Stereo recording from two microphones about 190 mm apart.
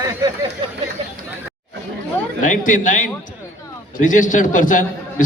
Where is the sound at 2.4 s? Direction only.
45° left (ahead or behind).